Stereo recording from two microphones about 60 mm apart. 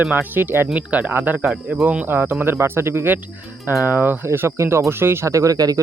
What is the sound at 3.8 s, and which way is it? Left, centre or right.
Speech, right.